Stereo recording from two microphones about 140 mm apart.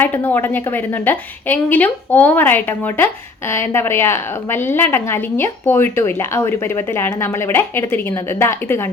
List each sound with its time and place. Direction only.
0.0 s a woman's voice: 15° left (ahead or behind)